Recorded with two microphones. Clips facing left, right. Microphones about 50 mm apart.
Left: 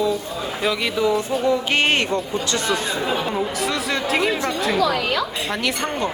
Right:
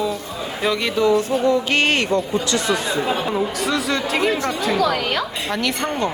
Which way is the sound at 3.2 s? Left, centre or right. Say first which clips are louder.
Right 2 dB; centre.